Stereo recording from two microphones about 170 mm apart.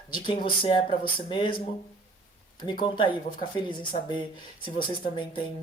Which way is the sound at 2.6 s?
25° left (ahead or behind).